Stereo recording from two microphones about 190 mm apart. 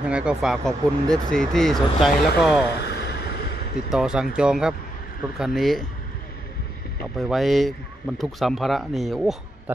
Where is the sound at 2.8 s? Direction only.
60° left (ahead or behind).